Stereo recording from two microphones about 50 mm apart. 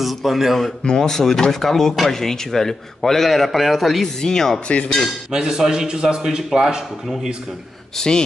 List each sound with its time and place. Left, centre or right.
0.0 s speech: centre
0.8 s speech: centre
4.0 s speech: centre
4.6 s dishes: left
5.3 s a man's voice: centre